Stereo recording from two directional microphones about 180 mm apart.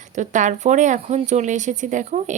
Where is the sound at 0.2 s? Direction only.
45° right (ahead or behind).